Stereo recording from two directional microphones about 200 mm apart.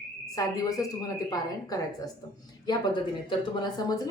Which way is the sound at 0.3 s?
15° left (ahead or behind).